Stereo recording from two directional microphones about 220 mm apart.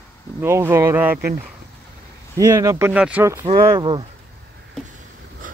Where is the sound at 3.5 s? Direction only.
20° right (ahead or behind).